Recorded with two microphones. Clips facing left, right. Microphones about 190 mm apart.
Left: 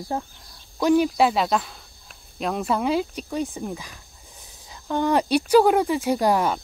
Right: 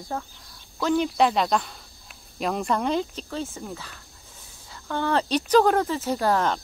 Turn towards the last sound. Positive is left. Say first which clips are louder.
# left 2 dB
turn(degrees=10)  # may be behind; listen again after turning